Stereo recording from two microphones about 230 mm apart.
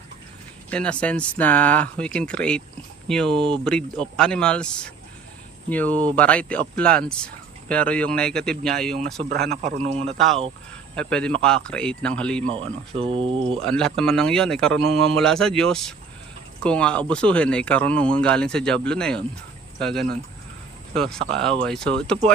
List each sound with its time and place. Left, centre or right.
0.7 s speech: centre
9.5 s a man's voice: right
10.2 s speech: centre
12.9 s a man's voice: right
13.4 s speech: centre